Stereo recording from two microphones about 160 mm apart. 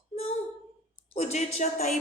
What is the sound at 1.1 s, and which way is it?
Speech, 45° left (ahead or behind).